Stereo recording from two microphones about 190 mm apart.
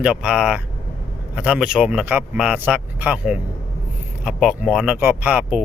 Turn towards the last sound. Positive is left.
turn(degrees=-5)  # may be behind; listen again after turning